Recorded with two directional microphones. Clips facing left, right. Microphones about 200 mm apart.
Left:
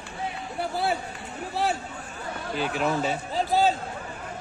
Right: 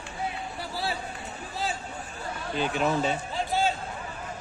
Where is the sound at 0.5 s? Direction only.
55° left (ahead or behind).